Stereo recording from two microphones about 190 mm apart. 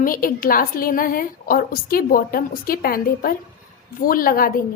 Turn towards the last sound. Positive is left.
turn(degrees=50)  # may be behind; listen again after turning